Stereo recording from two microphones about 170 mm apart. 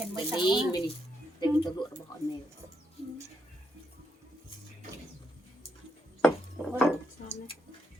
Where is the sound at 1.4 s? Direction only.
25° left (ahead or behind).